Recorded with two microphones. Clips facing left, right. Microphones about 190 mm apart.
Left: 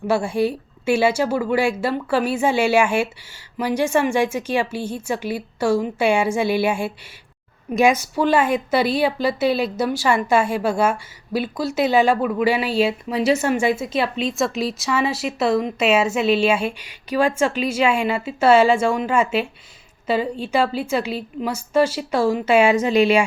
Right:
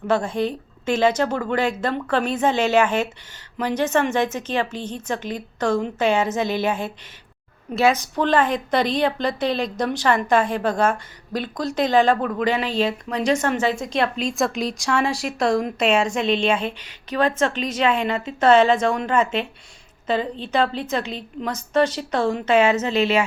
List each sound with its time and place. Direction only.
0.1 s a woman's voice: 10° left (ahead or behind)